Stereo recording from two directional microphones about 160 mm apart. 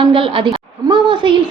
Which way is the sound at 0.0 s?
30° right (ahead or behind).